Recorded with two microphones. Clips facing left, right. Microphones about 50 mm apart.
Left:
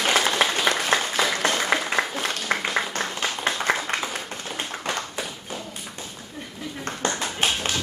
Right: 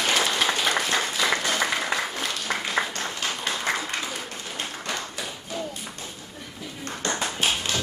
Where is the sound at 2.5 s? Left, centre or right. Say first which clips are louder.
Left 4 dB; left.